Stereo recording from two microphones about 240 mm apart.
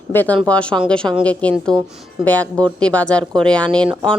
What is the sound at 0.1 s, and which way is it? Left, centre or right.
A woman's voice, centre.